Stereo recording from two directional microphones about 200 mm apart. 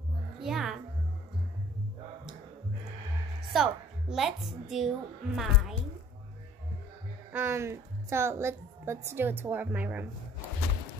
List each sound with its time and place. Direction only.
0.4 s music: centre (ahead or behind)
3.5 s a child's voice: centre (ahead or behind)
7.3 s a woman's voice: 15° right (ahead or behind)